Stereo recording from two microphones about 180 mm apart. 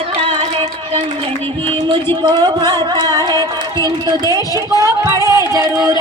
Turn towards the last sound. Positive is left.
turn(degrees=-15)  # may be behind; listen again after turning